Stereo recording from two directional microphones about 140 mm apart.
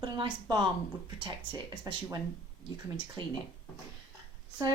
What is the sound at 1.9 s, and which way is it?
Speech, 25° right (ahead or behind).